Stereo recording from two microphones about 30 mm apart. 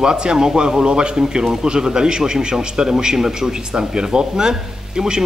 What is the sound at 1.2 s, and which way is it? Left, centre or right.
Speech, right.